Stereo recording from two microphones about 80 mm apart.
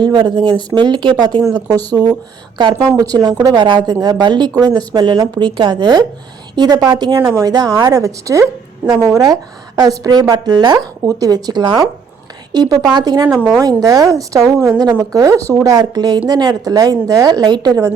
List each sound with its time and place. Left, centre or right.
0.0 s speech: right
1.5 s a woman's voice: right
6.6 s a woman's voice: right
8.8 s speech: right
9.1 s a woman's voice: right
12.5 s a woman's voice: right
12.9 s speech: right
13.8 s a woman's voice: right
15.6 s a woman's voice: right